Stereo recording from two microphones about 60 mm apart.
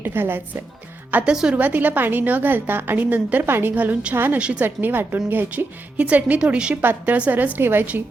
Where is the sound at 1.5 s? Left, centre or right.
Right.